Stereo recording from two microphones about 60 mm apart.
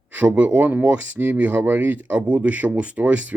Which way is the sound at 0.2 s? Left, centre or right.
Right.